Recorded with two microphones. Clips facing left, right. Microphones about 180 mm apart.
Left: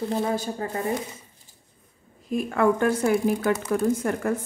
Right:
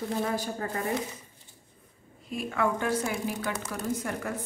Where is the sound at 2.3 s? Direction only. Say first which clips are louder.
Left 7 dB; 45° left (ahead or behind).